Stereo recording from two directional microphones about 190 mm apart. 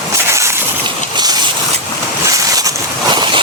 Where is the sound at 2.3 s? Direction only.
20° right (ahead or behind).